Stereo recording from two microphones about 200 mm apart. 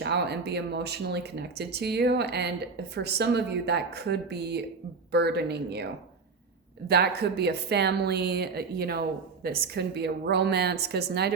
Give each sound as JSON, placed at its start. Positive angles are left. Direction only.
{"t": 0.0, "sound": "speech", "side_deg": -55}